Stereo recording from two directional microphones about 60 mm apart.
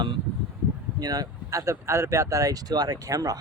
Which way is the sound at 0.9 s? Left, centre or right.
Right.